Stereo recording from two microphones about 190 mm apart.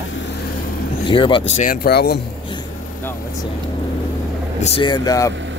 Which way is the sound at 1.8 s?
55° left (ahead or behind).